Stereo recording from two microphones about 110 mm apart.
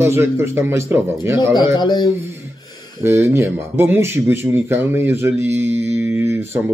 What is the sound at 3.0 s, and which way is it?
Speech, 20° right (ahead or behind).